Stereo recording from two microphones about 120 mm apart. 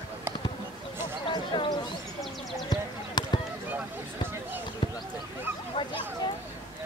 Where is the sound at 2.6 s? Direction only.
35° left (ahead or behind).